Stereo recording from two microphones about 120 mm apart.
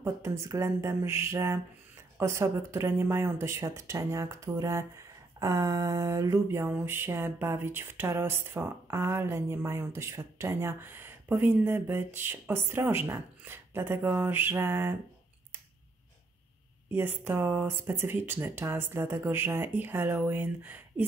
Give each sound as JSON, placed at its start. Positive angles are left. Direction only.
{"t": 0.0, "sound": "speech", "side_deg": -25}
{"t": 16.9, "sound": "speech", "side_deg": -15}